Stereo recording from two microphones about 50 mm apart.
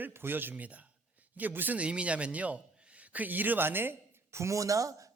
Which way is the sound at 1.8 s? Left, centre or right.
Right.